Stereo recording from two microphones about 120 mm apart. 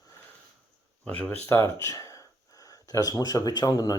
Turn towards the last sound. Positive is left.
turn(degrees=35)  # may be behind; listen again after turning